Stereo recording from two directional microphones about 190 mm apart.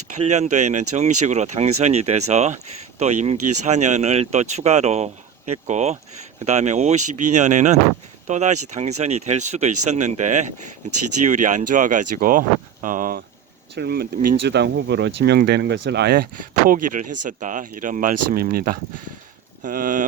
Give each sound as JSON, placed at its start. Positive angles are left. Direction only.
{"t": 0.2, "sound": "speech", "side_deg": -35}
{"t": 13.7, "sound": "speech", "side_deg": -60}
{"t": 16.6, "sound": "speech", "side_deg": -45}